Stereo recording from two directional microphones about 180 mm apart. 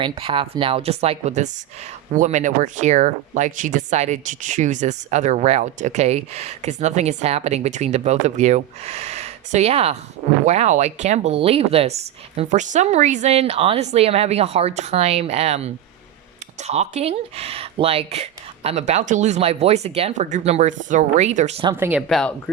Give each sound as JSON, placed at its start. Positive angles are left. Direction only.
{"t": 0.0, "sound": "speech", "side_deg": -30}
{"t": 21.7, "sound": "speech", "side_deg": -10}